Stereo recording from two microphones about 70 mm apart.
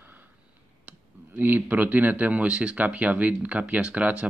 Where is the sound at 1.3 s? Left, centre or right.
Right.